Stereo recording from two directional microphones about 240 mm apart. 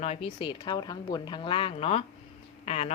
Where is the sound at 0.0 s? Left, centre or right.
Left.